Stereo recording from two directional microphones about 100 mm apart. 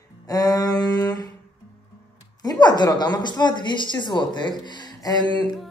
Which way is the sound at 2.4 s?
45° left (ahead or behind).